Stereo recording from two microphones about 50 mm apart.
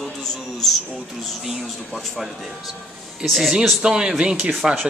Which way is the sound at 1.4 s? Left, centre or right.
Centre.